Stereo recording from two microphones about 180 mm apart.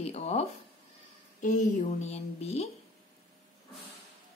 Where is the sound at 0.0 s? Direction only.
35° left (ahead or behind).